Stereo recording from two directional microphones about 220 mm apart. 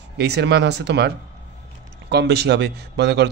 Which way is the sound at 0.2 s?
50° right (ahead or behind).